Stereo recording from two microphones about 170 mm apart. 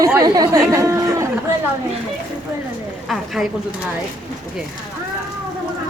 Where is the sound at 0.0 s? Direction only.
20° right (ahead or behind).